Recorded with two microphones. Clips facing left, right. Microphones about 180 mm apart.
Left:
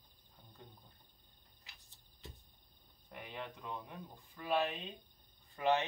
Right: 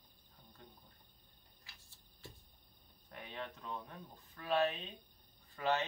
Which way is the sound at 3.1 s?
10° left (ahead or behind).